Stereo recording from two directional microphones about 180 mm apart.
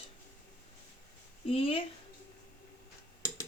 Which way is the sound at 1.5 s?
30° left (ahead or behind).